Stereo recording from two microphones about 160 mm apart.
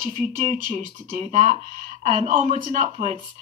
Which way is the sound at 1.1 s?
50° right (ahead or behind).